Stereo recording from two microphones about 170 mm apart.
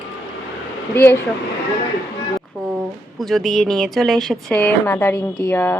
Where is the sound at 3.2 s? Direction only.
Centre (ahead or behind).